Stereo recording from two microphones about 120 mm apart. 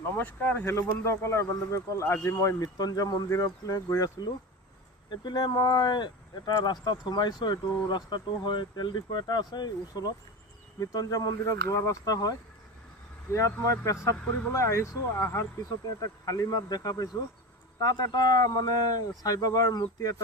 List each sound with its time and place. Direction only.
0.2 s speech: 15° left (ahead or behind)
5.2 s speech: 35° left (ahead or behind)